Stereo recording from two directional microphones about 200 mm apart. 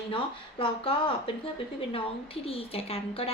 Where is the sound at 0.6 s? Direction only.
25° left (ahead or behind).